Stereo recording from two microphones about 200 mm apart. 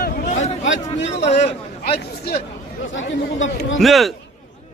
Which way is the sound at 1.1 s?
35° left (ahead or behind).